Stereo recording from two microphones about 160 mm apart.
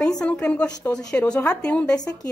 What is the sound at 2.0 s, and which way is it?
Speech, 25° left (ahead or behind).